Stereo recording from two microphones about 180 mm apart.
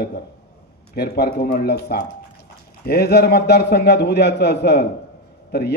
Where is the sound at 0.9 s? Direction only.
65° left (ahead or behind).